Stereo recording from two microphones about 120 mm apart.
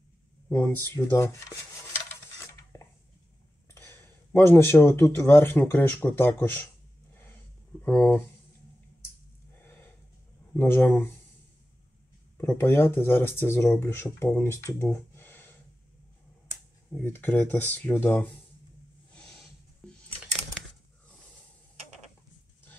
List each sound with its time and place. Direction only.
0.5 s speech: 25° left (ahead or behind)
2.5 s dishes: 25° left (ahead or behind)
3.7 s speech: 20° left (ahead or behind)
7.2 s a sound: 20° left (ahead or behind)
9.6 s a sound: 15° left (ahead or behind)
10.5 s speech: 20° left (ahead or behind)
12.4 s speech: 20° left (ahead or behind)
17.0 s speech: 15° left (ahead or behind)
19.8 s computer keyboard: 5° left (ahead or behind)